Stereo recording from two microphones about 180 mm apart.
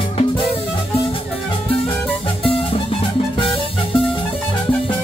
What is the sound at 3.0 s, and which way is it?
Music, 30° left (ahead or behind).